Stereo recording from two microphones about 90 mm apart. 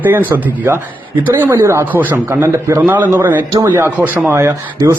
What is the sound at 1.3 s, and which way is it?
Speech, 25° right (ahead or behind).